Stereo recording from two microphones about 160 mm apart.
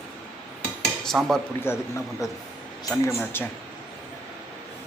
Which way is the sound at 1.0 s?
Centre (ahead or behind).